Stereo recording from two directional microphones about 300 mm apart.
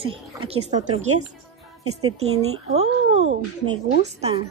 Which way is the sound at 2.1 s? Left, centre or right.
Right.